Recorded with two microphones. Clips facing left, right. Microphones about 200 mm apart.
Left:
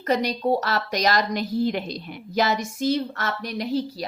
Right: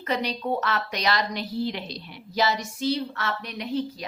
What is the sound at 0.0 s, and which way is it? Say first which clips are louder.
A woman's voice: left 5 dB; 40° left (ahead or behind).